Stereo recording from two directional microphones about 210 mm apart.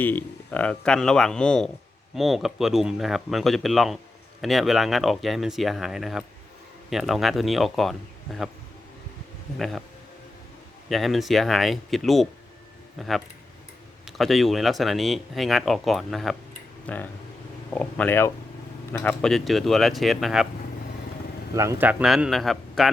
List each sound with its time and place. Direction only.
0.0 s speech: 10° left (ahead or behind)
9.6 s speech: centre (ahead or behind)
10.8 s speech: centre (ahead or behind)
21.5 s speech: 15° right (ahead or behind)